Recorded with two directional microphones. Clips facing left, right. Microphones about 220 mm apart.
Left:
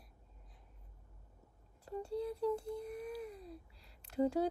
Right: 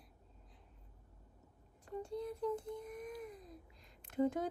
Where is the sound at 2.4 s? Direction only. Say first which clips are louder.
Left 3 dB; 35° left (ahead or behind).